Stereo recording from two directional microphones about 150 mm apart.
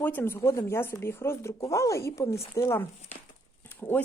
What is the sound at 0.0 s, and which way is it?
Speech, 15° left (ahead or behind).